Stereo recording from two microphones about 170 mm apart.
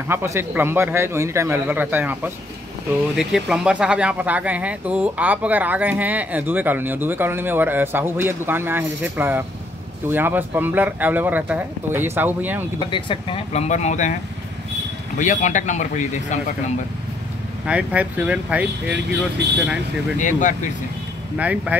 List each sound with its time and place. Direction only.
0.1 s speech: 15° right (ahead or behind)
12.9 s speech: 30° left (ahead or behind)
15.1 s speech: 45° left (ahead or behind)
17.6 s speech: 10° right (ahead or behind)
20.2 s speech: 50° left (ahead or behind)
21.4 s speech: 10° right (ahead or behind)